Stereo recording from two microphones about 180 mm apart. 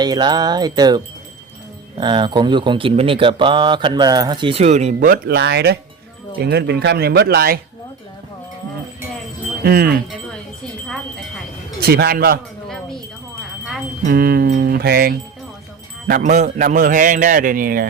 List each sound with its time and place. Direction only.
0.0 s speech: 25° right (ahead or behind); by 7.6 s 60° right (ahead or behind)
9.6 s speech: 55° right (ahead or behind)
11.8 s speech: 60° right (ahead or behind)
12.6 s wind chime: centre (ahead or behind)
14.1 s speech: 55° right (ahead or behind)
16.0 s a man's voice: 50° right (ahead or behind)